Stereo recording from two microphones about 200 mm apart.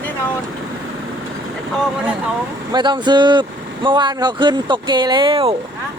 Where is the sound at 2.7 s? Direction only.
20° right (ahead or behind).